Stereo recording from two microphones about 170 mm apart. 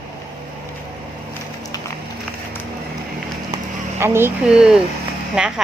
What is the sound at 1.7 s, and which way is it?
Run, 20° left (ahead or behind).